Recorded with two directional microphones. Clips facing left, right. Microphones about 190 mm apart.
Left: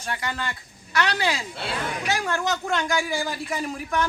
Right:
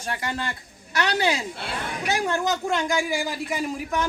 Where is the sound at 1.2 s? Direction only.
20° right (ahead or behind).